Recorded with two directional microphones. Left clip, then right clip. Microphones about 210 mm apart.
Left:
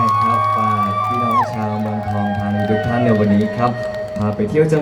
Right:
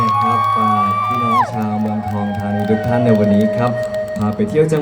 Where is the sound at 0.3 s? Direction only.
40° right (ahead or behind).